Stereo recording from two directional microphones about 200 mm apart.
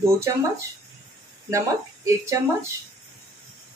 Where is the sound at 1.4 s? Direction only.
15° right (ahead or behind).